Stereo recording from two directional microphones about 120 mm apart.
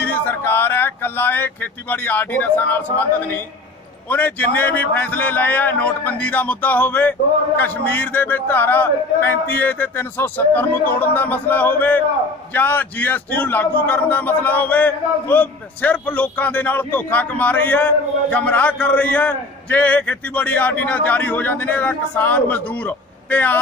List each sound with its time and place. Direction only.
0.0 s a man's voice: 15° left (ahead or behind)